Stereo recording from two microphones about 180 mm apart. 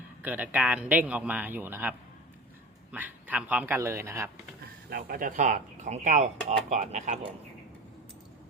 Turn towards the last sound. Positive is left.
turn(degrees=-40)  # may be behind; listen again after turning